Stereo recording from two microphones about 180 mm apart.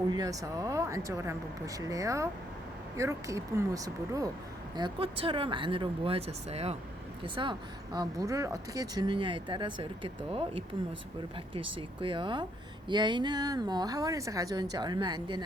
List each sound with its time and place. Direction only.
0.1 s speech: 20° right (ahead or behind)
4.8 s speech: 30° right (ahead or behind)
7.4 s speech: 25° right (ahead or behind)